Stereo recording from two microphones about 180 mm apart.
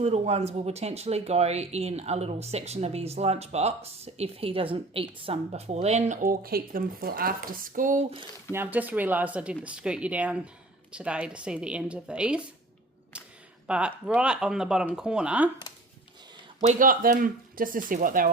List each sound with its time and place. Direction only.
0.0 s speech: 35° right (ahead or behind)
8.5 s speech: 10° right (ahead or behind)
13.1 s a sound: 5° right (ahead or behind)
13.7 s speech: 5° right (ahead or behind)
16.6 s speech: 45° right (ahead or behind)